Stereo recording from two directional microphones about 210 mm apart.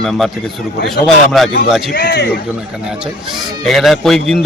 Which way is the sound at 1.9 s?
55° left (ahead or behind).